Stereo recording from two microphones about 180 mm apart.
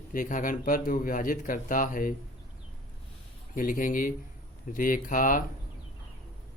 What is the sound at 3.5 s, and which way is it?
Speech, 50° left (ahead or behind).